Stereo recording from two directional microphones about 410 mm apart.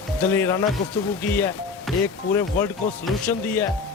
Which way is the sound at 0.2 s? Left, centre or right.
Centre.